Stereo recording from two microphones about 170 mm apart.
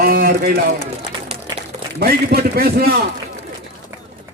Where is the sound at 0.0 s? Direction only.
60° right (ahead or behind).